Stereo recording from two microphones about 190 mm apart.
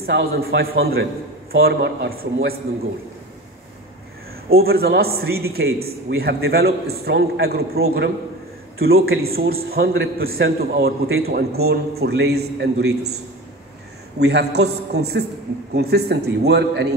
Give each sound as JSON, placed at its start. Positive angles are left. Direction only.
{"t": 0.0, "sound": "a man's voice", "side_deg": -55}
{"t": 1.5, "sound": "a man's voice", "side_deg": -75}
{"t": 4.5, "sound": "a man's voice", "side_deg": -55}
{"t": 14.2, "sound": "a man's voice", "side_deg": -60}